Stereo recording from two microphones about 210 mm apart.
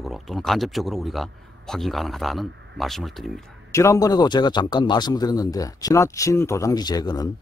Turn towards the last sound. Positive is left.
turn(degrees=20)  # may be behind; listen again after turning